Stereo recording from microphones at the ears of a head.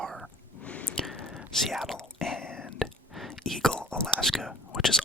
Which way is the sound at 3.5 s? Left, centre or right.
Centre.